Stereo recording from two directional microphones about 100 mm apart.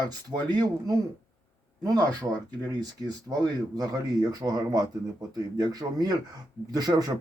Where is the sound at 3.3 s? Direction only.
20° right (ahead or behind).